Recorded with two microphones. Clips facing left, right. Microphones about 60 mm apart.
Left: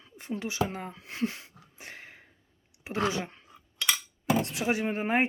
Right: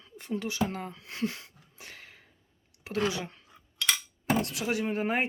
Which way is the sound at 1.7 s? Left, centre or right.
Left.